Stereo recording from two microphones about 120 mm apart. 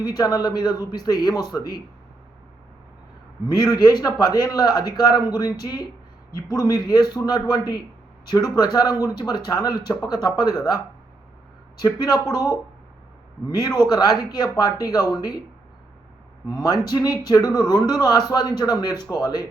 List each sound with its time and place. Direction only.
0.0 s speech: 30° left (ahead or behind)
3.4 s speech: 30° left (ahead or behind)
11.8 s speech: 30° left (ahead or behind)
13.6 s speech: 30° left (ahead or behind)
16.5 s speech: 30° left (ahead or behind)